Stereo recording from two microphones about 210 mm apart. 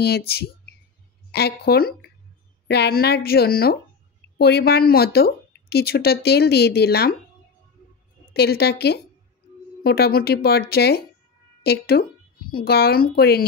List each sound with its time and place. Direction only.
0.0 s speech: 50° left (ahead or behind)
8.3 s a woman's voice: 50° left (ahead or behind)